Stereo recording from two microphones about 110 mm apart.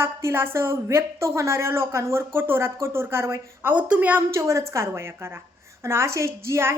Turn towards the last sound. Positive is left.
turn(degrees=-25)  # may be behind; listen again after turning